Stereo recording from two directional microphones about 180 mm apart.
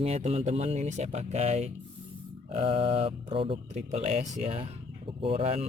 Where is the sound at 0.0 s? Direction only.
35° right (ahead or behind).